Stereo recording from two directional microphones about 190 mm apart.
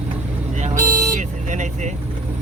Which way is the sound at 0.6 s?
40° right (ahead or behind).